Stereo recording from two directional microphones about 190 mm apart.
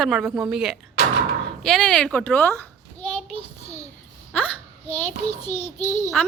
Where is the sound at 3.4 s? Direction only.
35° left (ahead or behind).